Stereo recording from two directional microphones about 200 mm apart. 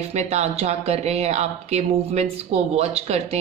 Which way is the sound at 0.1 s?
35° right (ahead or behind).